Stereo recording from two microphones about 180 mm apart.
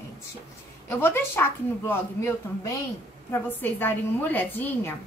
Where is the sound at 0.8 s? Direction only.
10° left (ahead or behind).